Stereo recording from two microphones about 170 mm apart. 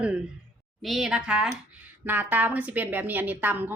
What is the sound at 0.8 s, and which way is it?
Speech, centre (ahead or behind).